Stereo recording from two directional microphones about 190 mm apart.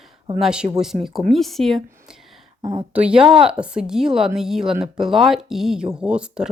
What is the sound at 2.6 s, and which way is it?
Speech, 25° right (ahead or behind).